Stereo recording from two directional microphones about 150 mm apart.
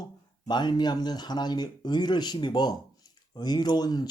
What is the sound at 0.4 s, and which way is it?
Speech, 30° left (ahead or behind).